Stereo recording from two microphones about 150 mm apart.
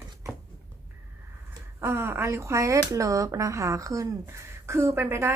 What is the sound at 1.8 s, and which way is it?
A woman's voice, 15° right (ahead or behind).